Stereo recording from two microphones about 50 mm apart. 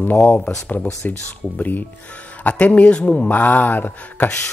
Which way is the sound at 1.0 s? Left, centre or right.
Left.